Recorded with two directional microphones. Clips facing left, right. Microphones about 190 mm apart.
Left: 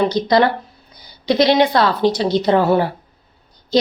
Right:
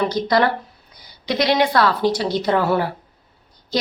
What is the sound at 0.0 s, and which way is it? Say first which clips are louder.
Speech: left 3 dB; 20° left (ahead or behind).